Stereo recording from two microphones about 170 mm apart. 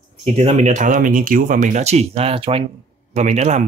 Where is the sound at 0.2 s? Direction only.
40° right (ahead or behind).